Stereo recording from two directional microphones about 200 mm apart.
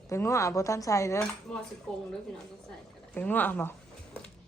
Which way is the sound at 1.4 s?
5° left (ahead or behind).